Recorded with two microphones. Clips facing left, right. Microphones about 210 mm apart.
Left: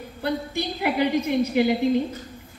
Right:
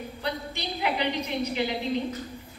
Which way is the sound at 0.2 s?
50° left (ahead or behind).